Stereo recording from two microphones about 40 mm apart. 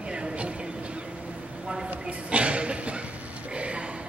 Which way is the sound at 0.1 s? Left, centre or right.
Right.